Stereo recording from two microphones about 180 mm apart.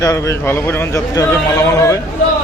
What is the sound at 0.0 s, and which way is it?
Speech, 15° left (ahead or behind).